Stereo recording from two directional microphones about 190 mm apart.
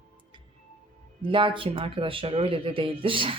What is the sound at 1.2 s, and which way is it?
Speech, 25° right (ahead or behind).